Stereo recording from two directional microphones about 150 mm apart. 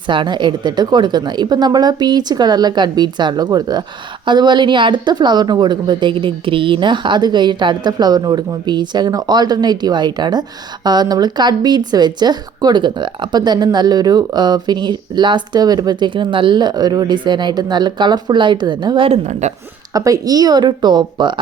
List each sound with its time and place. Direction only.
0.1 s speech: 30° right (ahead or behind); by 19.5 s 50° right (ahead or behind)
19.9 s speech: 25° right (ahead or behind)